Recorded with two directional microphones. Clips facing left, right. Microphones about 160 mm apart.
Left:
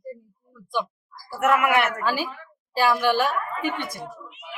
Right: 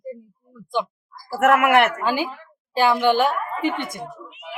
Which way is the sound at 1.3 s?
75° right (ahead or behind).